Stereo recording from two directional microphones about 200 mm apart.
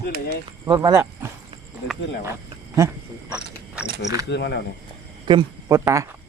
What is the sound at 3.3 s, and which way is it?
Cricket, 5° right (ahead or behind).